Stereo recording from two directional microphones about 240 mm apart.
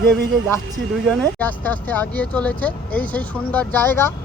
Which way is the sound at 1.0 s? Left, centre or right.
Centre.